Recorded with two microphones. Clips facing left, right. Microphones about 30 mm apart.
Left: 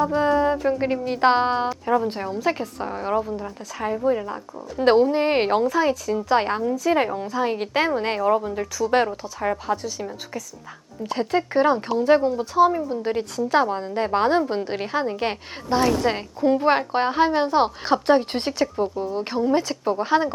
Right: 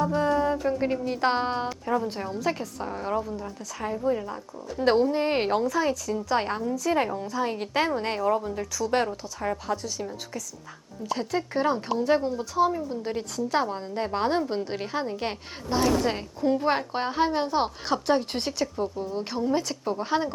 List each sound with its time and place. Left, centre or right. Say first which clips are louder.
0.2 s a woman's voice: left 5 dB; left
11.1 s a woman's voice: left 6 dB; left
12.5 s speech: left 6 dB; left
13.1 s a woman's voice: left 6 dB; centre